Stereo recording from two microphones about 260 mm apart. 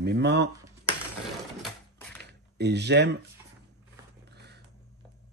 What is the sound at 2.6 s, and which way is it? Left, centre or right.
Speech, right.